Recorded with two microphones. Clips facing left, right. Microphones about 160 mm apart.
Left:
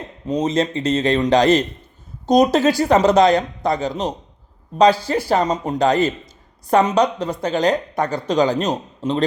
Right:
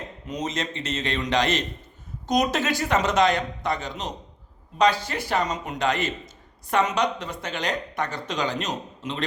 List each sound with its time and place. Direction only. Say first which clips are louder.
0.3 s speech: left 11 dB; 30° left (ahead or behind)